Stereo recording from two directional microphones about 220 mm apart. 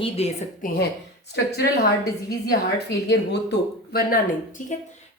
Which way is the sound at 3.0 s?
50° left (ahead or behind).